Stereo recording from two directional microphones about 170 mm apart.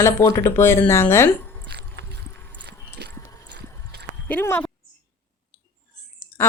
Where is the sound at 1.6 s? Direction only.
85° right.